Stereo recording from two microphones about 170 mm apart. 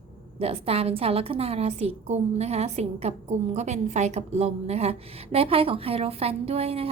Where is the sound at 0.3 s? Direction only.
35° right (ahead or behind).